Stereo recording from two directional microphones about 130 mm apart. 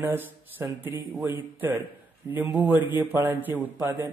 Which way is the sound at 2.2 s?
25° right (ahead or behind).